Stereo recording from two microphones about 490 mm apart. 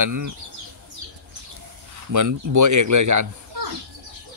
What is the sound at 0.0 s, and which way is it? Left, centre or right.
Speech, right.